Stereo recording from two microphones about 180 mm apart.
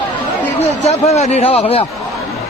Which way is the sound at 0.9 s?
35° left (ahead or behind).